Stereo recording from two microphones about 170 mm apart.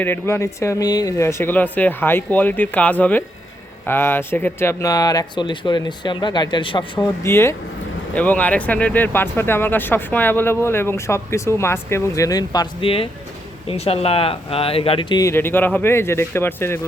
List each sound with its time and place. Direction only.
0.0 s speech: 15° left (ahead or behind)